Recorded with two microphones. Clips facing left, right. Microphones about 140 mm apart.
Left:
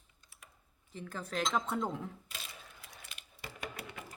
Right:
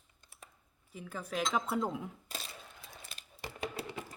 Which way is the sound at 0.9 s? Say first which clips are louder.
Even; 5° right (ahead or behind).